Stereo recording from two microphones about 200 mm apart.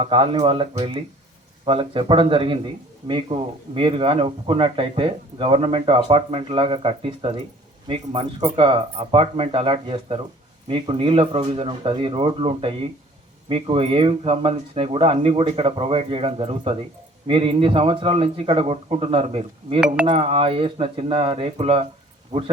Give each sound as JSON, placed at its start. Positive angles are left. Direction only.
{"t": 0.0, "sound": "speech", "side_deg": -25}